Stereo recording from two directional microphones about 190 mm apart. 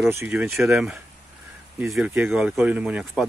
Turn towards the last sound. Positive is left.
turn(degrees=-5)  # may be behind; listen again after turning